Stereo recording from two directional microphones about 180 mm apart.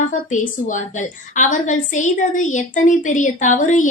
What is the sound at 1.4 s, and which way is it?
A woman's voice, 45° left (ahead or behind).